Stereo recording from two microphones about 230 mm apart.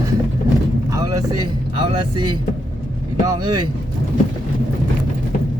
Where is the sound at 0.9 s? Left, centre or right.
Centre.